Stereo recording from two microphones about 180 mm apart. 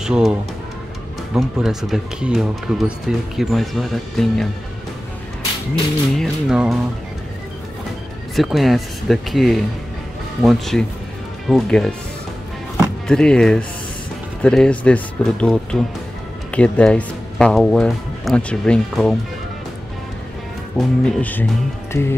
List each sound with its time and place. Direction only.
0.0 s speech: 5° right (ahead or behind)
6.1 s speech: centre (ahead or behind)
8.4 s speech: centre (ahead or behind)
13.0 s speech: 5° left (ahead or behind)
20.7 s speech: 5° left (ahead or behind)